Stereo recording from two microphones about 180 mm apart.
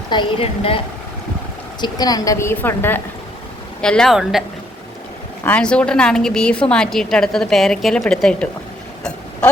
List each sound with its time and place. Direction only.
0.1 s a woman's voice: 30° left (ahead or behind)
1.8 s a woman's voice: 20° left (ahead or behind); by 8.4 s 5° left (ahead or behind)